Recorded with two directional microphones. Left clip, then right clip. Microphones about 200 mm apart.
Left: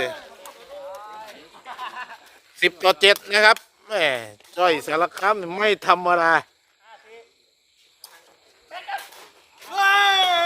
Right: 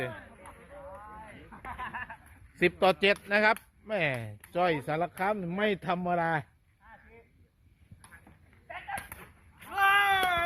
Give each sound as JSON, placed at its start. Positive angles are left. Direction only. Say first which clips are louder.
{"t": 0.9, "sound": "a sound", "louder": "left 9 dB", "side_deg": 55}
{"t": 2.6, "sound": "speech", "louder": "left 7 dB", "side_deg": 10}
{"t": 9.7, "sound": "baby cry", "louder": "left 7 dB", "side_deg": 15}